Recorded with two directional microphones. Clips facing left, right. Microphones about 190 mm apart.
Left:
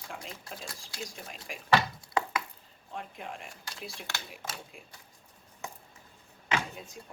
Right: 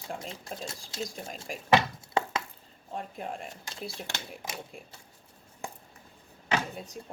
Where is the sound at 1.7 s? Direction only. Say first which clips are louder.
Right 2 dB; 20° right (ahead or behind).